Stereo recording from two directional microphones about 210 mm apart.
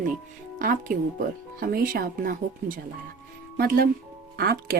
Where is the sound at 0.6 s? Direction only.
40° right (ahead or behind).